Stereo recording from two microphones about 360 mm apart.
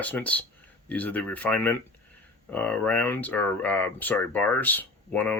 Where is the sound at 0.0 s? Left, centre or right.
Centre.